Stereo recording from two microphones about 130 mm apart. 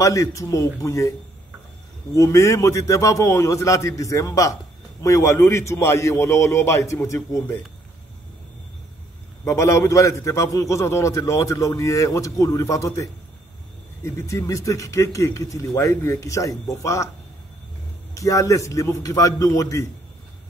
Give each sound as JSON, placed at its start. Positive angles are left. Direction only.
{"t": 0.0, "sound": "a man's voice", "side_deg": 25}
{"t": 2.1, "sound": "a man's voice", "side_deg": 25}
{"t": 9.4, "sound": "a man's voice", "side_deg": 20}
{"t": 18.1, "sound": "a man's voice", "side_deg": 25}